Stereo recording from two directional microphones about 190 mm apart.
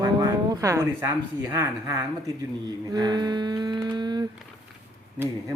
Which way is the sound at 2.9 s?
25° right (ahead or behind).